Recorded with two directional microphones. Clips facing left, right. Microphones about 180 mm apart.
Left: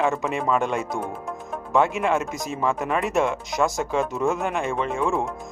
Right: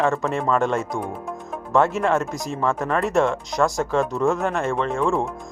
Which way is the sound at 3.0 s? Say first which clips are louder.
Right 3 dB; centre (ahead or behind).